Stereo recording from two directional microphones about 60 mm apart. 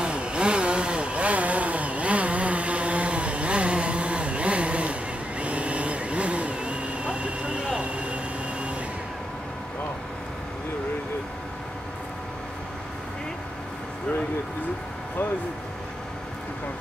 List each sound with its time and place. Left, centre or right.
0.0 s vehicle: centre